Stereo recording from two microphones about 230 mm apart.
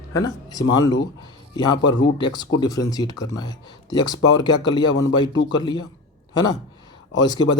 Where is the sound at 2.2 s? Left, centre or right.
Centre.